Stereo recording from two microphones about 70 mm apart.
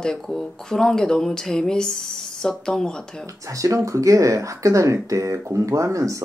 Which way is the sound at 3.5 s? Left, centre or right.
Right.